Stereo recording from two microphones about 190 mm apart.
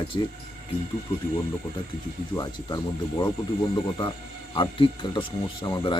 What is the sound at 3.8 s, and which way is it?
Speech, 20° left (ahead or behind).